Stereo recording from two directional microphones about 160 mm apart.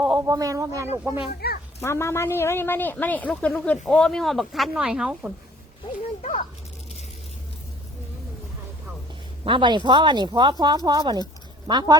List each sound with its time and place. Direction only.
0.2 s speech: 20° right (ahead or behind)
1.3 s speech: 80° left
1.8 s a woman's voice: 15° left (ahead or behind); by 5.3 s 5° right (ahead or behind)
6.2 s speech: 45° left (ahead or behind)
9.4 s speech: 30° right (ahead or behind)